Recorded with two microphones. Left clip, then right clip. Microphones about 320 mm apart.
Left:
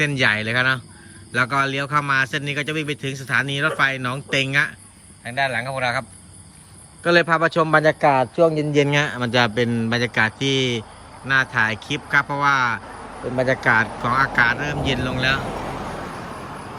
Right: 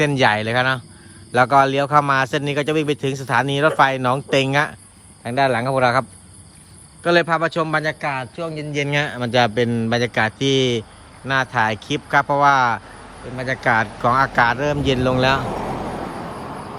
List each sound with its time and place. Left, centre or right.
0.0 s a man's voice: centre
7.0 s a man's voice: centre
15.5 s vehicle: right